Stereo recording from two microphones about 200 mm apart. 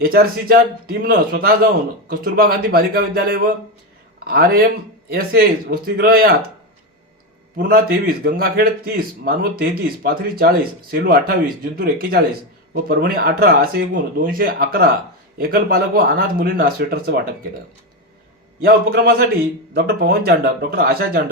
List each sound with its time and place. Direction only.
0.0 s speech: 50° right (ahead or behind)
7.5 s speech: 50° right (ahead or behind)
18.6 s speech: 50° right (ahead or behind)